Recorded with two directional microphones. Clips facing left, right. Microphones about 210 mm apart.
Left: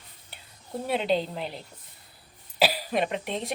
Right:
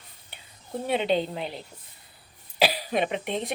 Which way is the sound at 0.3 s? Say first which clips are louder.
Right 2 dB; centre (ahead or behind).